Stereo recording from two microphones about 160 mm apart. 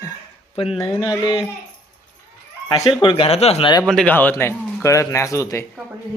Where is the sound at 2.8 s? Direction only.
30° left (ahead or behind).